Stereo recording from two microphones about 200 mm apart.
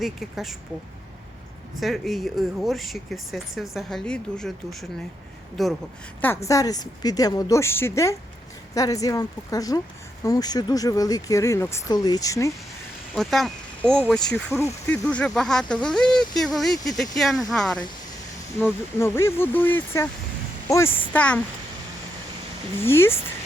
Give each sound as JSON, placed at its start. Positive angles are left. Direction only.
{"t": 0.0, "sound": "speech", "side_deg": 0}
{"t": 1.8, "sound": "speech", "side_deg": 0}
{"t": 6.2, "sound": "speech", "side_deg": 15}
{"t": 13.1, "sound": "speech", "side_deg": 0}
{"t": 22.8, "sound": "speech", "side_deg": 10}